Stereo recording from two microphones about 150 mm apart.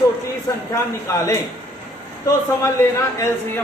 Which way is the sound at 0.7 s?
20° left (ahead or behind).